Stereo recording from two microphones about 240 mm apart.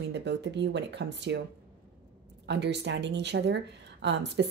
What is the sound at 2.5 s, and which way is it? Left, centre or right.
Speech, right.